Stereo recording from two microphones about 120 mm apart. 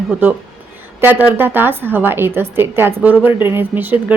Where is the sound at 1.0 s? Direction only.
15° right (ahead or behind).